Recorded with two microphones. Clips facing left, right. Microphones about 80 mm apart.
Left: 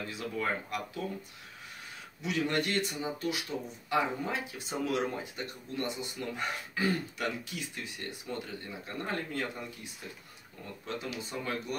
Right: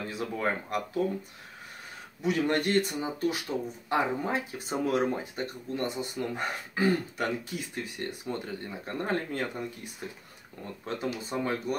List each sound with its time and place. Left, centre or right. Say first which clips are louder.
0.1 s speech: right 3 dB; right
2.2 s speech: right 4 dB; right
11.0 s speech: right 8 dB; right